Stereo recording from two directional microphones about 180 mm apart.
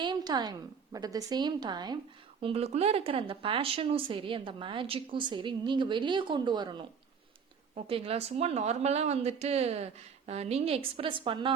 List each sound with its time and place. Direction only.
0.0 s a woman's voice: 25° right (ahead or behind)
2.4 s speech: 35° right (ahead or behind)
7.9 s speech: 30° right (ahead or behind)